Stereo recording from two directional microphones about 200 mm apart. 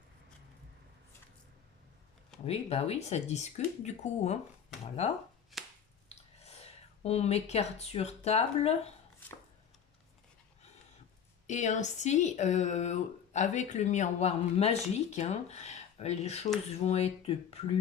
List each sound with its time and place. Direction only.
2.5 s speech: 30° left (ahead or behind)
6.1 s chewing: 30° left (ahead or behind)
7.0 s speech: 30° left (ahead or behind)
11.4 s speech: 40° left (ahead or behind)